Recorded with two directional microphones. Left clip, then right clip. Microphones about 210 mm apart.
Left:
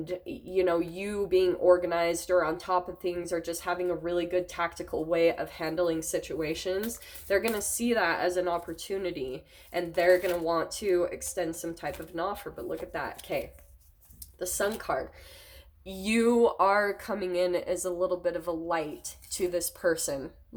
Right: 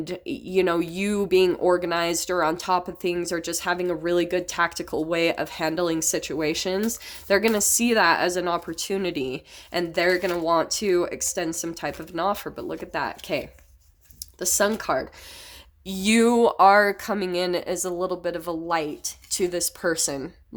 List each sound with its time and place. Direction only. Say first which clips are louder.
0.0 s speech: right 5 dB; 50° right (ahead or behind)
15.9 s speech: right 6 dB; 40° right (ahead or behind)